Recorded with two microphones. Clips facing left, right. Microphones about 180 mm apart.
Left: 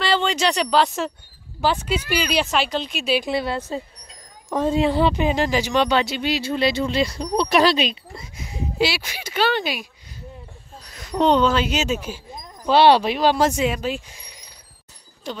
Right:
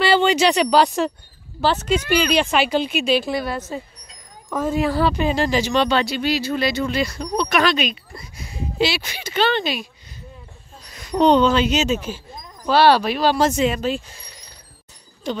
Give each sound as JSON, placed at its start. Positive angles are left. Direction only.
{"t": 0.0, "sound": "speech", "side_deg": -5}
{"t": 1.6, "sound": "speech", "side_deg": 10}
{"t": 3.3, "sound": "speech", "side_deg": 25}
{"t": 11.1, "sound": "speech", "side_deg": 0}
{"t": 12.6, "sound": "speech", "side_deg": 20}